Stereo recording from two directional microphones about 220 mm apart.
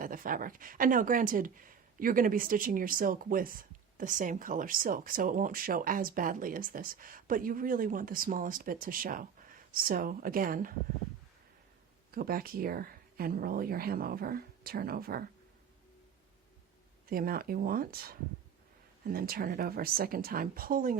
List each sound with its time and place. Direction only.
0.0 s speech: 40° right (ahead or behind)
12.1 s speech: 40° right (ahead or behind)
17.1 s speech: 40° right (ahead or behind)